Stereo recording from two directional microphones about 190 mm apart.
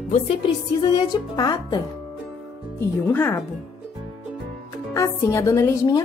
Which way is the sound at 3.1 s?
10° left (ahead or behind).